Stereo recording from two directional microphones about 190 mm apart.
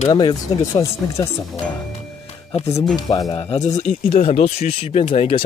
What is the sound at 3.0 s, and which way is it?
Speech, 20° left (ahead or behind).